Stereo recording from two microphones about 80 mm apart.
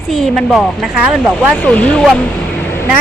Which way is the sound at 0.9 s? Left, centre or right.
Centre.